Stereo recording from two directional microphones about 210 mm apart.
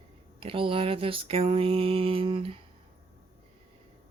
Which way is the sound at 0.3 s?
25° right (ahead or behind).